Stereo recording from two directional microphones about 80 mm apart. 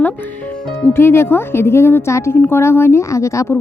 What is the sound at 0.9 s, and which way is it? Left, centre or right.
A woman's voice, left.